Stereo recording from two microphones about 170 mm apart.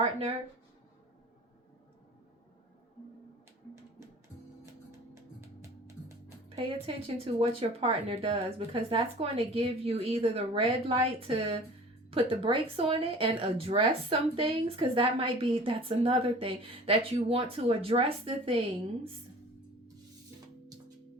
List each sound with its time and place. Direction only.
0.0 s speech: 35° right (ahead or behind)
7.3 s speech: 35° right (ahead or behind)